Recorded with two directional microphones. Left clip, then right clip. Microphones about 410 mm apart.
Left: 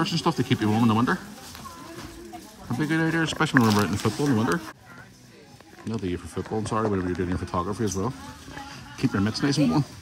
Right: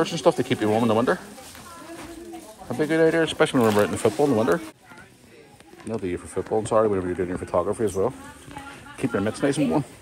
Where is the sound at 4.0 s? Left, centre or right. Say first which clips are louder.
Right 5 dB; right.